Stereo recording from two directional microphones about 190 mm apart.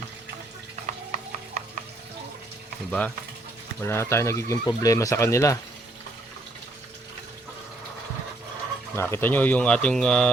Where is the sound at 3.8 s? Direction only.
15° left (ahead or behind).